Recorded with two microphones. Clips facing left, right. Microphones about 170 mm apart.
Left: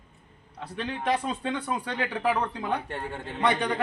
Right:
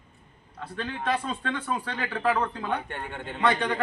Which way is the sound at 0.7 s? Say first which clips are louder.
Left 1 dB; 15° left (ahead or behind).